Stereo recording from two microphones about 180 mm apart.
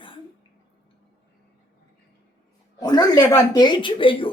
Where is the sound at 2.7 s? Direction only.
20° left (ahead or behind).